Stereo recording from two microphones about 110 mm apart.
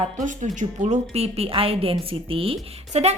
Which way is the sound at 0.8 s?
80° right.